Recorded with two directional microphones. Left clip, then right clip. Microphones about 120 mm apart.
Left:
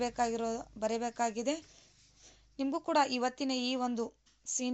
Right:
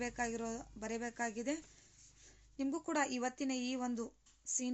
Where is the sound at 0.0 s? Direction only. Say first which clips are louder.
Left 7 dB; 25° left (ahead or behind).